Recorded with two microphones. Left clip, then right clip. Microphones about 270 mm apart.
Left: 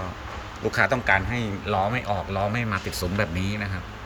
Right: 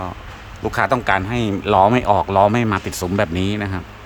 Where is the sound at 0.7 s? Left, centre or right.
Centre.